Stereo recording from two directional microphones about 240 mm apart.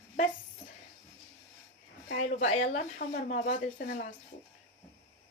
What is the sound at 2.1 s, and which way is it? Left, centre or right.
Speech, left.